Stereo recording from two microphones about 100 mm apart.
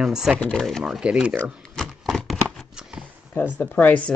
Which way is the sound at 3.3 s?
15° left (ahead or behind).